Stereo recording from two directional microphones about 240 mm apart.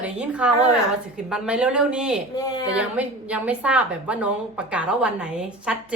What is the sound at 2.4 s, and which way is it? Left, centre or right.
Speech, centre.